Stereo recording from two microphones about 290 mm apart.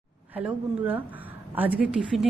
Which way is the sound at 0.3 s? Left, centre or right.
Centre.